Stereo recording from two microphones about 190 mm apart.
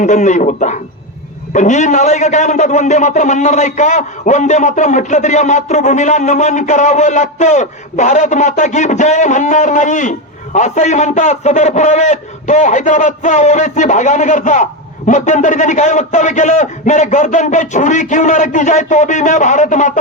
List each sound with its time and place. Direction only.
0.0 s a man's voice: 40° left (ahead or behind)